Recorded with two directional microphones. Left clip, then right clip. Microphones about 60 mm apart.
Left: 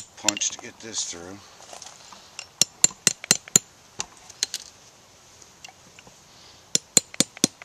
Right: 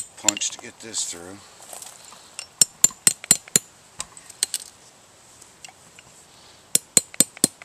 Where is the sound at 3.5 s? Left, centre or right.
Left.